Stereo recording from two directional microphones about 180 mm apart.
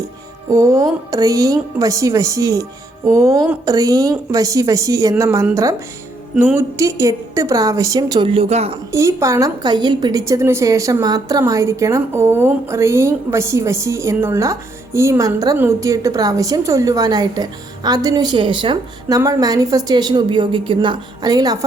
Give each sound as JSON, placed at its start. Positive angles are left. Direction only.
{"t": 0.5, "sound": "a woman's voice", "side_deg": -20}
{"t": 8.9, "sound": "a woman's voice", "side_deg": -15}